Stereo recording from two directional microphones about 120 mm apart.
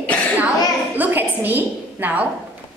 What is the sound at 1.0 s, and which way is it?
A woman's voice, 15° right (ahead or behind).